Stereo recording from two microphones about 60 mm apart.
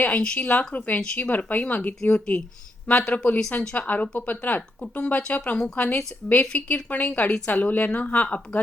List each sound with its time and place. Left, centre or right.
0.0 s speech: left